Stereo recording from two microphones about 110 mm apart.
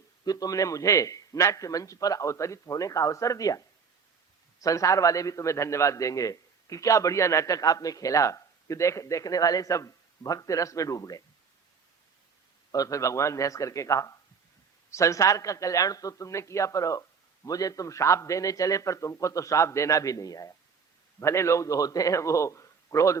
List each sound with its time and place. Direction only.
0.3 s a man's voice: 35° left (ahead or behind)
4.6 s a man's voice: 30° left (ahead or behind)
12.7 s a man's voice: 30° left (ahead or behind)